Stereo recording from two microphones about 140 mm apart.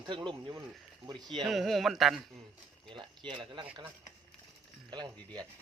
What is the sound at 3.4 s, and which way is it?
Speech, 35° right (ahead or behind).